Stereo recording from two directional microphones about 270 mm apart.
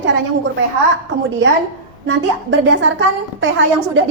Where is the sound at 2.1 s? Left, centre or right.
Right.